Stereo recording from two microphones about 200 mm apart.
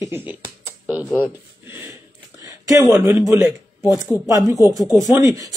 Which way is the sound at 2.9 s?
15° right (ahead or behind).